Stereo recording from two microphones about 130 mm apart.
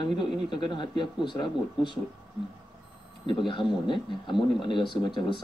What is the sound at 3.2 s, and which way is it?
Speech, 40° left (ahead or behind).